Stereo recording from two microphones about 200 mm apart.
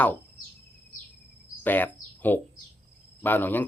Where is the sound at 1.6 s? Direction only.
10° left (ahead or behind).